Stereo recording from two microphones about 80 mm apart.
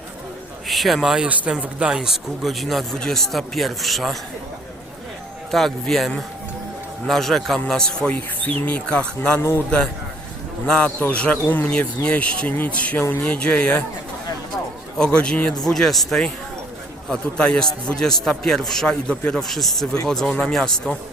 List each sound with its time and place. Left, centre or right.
0.7 s speech: centre
1.3 s speech: centre
5.5 s speech: centre
14.9 s speech: centre